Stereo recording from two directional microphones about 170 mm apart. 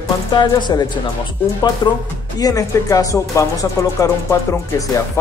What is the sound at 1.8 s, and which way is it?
Speech, 25° left (ahead or behind).